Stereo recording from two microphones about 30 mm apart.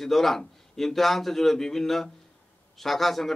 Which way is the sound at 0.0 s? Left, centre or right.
Centre.